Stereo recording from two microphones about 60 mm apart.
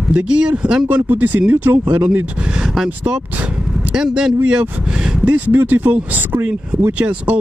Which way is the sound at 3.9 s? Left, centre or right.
Centre.